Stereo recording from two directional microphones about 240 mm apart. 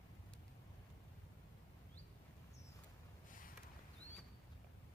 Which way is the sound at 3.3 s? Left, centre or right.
Left.